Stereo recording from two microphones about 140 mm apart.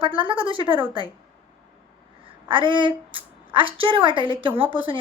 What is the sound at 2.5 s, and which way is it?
Speech, 35° right (ahead or behind).